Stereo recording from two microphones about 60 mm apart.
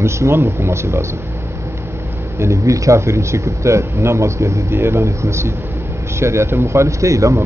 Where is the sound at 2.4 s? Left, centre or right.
Right.